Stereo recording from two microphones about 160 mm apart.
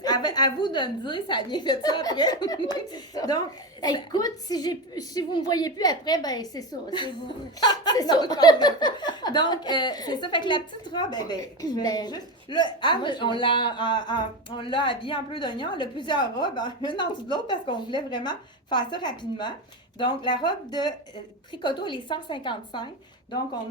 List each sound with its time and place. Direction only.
0.0 s speech: 25° left (ahead or behind)